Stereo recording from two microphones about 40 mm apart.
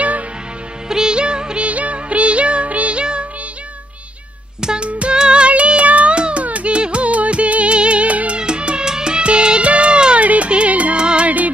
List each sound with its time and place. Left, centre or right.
0.8 s music: centre
1.7 s music: right
4.6 s music: centre
4.8 s music: right
8.4 s music: right
10.2 s music: right
11.0 s music: right
11.2 s music: right